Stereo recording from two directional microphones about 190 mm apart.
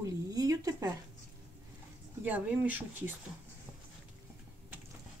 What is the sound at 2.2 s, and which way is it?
Speech, 10° right (ahead or behind).